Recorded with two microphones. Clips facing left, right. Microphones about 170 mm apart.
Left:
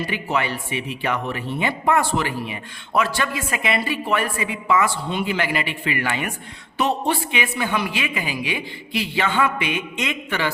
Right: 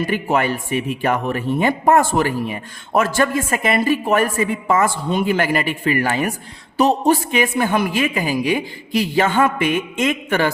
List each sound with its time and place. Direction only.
0.0 s a man's voice: 50° right (ahead or behind)